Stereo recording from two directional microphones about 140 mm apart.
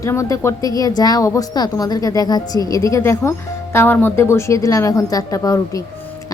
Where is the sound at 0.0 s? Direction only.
20° left (ahead or behind).